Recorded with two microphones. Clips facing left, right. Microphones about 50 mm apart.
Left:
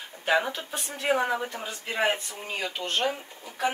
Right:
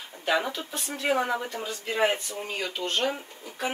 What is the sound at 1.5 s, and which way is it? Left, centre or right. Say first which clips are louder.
Speech: right 2 dB; left.